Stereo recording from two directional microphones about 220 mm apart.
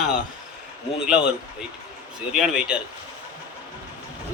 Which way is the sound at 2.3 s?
5° right (ahead or behind).